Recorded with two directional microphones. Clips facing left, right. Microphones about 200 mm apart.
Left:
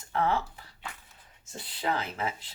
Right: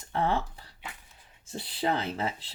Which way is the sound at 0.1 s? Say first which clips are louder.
Even; 30° right (ahead or behind).